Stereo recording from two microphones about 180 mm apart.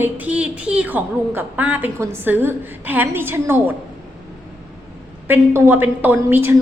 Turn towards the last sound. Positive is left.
turn(degrees=-10)  # may be behind; listen again after turning